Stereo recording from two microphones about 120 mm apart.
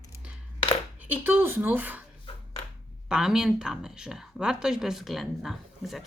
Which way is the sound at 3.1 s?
5° right (ahead or behind).